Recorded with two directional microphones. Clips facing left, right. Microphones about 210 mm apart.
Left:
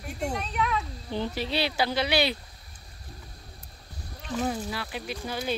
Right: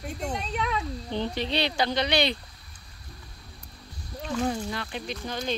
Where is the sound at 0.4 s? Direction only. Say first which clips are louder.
Left 1 dB; 30° right (ahead or behind).